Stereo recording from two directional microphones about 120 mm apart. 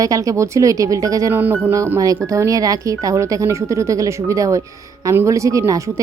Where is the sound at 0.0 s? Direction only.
30° right (ahead or behind).